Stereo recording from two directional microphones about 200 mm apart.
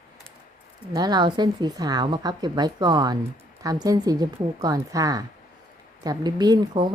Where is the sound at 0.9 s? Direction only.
20° right (ahead or behind).